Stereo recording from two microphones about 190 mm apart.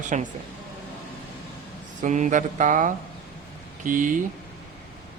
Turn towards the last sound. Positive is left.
turn(degrees=-45)  # may be behind; listen again after turning